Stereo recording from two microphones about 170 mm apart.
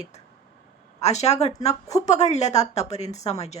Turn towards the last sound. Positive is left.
turn(degrees=40)  # may be behind; listen again after turning